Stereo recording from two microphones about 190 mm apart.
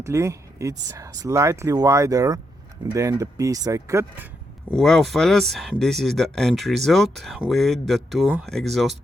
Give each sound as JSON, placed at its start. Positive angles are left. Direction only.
{"t": 0.0, "sound": "speech", "side_deg": -15}
{"t": 4.7, "sound": "speech", "side_deg": 0}